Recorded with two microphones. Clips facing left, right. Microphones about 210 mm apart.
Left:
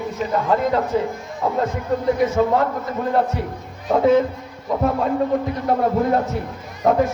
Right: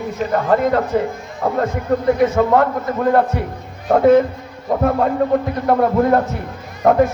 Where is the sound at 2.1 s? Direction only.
60° right (ahead or behind).